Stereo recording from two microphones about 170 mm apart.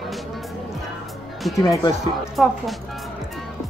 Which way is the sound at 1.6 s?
20° left (ahead or behind).